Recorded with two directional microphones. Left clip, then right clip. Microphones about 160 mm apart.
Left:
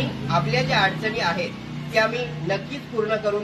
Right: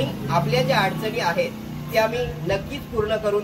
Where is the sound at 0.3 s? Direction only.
15° right (ahead or behind).